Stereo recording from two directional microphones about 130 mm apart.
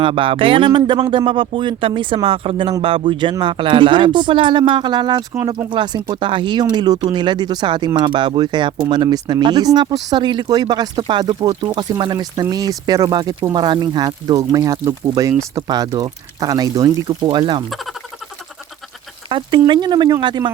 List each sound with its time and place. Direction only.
0.0 s speech: 45° right (ahead or behind)
19.3 s speech: 40° right (ahead or behind)